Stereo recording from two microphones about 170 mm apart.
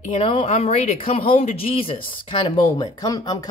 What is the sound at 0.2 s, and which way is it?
Speech, 30° left (ahead or behind).